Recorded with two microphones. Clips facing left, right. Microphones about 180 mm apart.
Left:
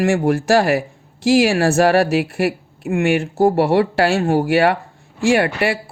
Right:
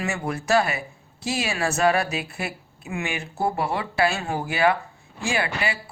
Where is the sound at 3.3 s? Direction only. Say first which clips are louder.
Left 10 dB; 80° left.